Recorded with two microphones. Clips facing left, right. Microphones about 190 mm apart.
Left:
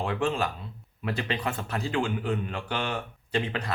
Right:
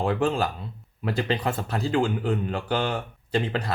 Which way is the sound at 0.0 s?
35° right (ahead or behind).